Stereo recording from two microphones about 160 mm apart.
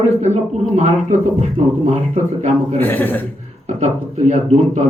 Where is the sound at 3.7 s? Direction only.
45° right (ahead or behind).